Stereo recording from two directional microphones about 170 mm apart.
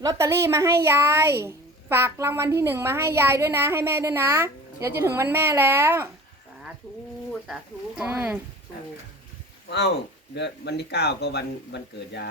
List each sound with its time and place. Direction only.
0.0 s speech: 20° right (ahead or behind)
7.4 s speech: 5° right (ahead or behind)
9.6 s a man's voice: 80° left